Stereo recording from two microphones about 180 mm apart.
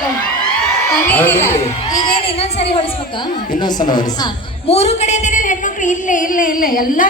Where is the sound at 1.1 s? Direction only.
10° left (ahead or behind).